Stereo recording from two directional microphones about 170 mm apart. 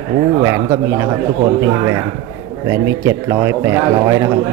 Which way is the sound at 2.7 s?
15° right (ahead or behind).